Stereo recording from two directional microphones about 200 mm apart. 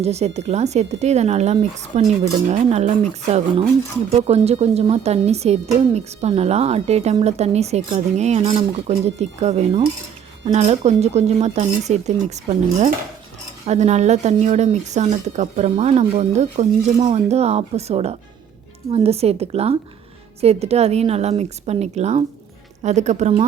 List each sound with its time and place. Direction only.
0.0 s speech: 35° right (ahead or behind)
13.7 s speech: 35° right (ahead or behind)